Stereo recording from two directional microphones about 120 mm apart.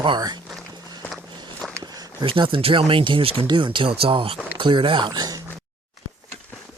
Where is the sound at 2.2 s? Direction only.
45° right (ahead or behind).